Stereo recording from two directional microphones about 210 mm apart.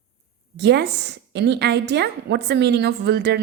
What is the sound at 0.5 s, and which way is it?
A woman's voice, 55° right (ahead or behind).